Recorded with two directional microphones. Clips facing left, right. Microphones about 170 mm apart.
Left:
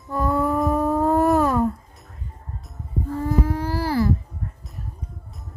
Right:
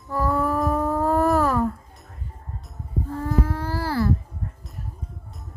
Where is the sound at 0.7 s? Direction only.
15° left (ahead or behind).